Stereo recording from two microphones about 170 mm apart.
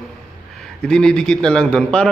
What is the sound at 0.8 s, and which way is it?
A man's voice, 5° left (ahead or behind).